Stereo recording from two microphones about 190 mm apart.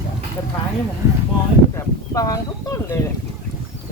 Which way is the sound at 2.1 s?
20° left (ahead or behind).